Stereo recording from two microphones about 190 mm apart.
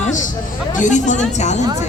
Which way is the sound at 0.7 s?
40° left (ahead or behind).